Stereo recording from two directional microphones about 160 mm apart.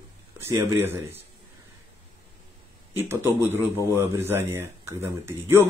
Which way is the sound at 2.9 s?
15° right (ahead or behind).